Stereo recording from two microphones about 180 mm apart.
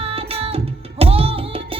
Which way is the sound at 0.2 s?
30° right (ahead or behind).